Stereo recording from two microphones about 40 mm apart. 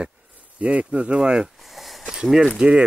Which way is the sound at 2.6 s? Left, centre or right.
Right.